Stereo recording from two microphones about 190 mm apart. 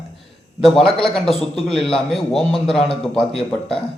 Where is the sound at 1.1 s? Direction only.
Centre (ahead or behind).